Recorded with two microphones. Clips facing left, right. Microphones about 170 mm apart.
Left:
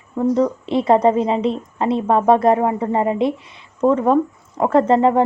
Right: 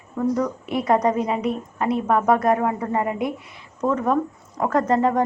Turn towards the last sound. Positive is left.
turn(degrees=25)  # may be behind; listen again after turning